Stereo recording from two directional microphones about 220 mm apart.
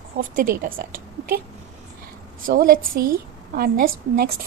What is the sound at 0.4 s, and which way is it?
A woman's voice, 40° right (ahead or behind).